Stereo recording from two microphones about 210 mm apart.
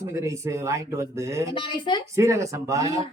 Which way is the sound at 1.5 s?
25° left (ahead or behind).